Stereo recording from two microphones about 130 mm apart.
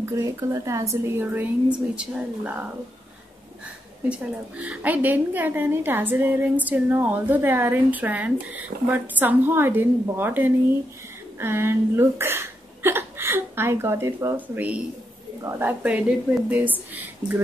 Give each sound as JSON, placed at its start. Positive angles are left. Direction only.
{"t": 0.0, "sound": "a woman's voice", "side_deg": -30}
{"t": 4.1, "sound": "a woman's voice", "side_deg": -10}